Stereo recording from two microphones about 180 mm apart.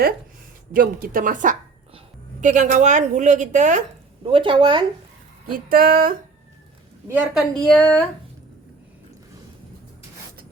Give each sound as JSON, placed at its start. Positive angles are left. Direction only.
{"t": 0.7, "sound": "a woman's voice", "side_deg": -50}
{"t": 4.3, "sound": "speech", "side_deg": -30}
{"t": 5.5, "sound": "a woman's voice", "side_deg": -50}
{"t": 7.1, "sound": "a woman's voice", "side_deg": -10}
{"t": 7.6, "sound": "speech", "side_deg": 5}